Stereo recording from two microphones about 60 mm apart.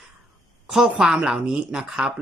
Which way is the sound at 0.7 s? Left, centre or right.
Centre.